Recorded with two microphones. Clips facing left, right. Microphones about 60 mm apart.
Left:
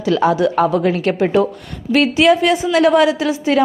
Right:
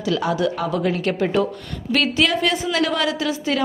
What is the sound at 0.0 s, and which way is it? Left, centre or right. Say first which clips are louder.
A woman's voice: left 6 dB; left.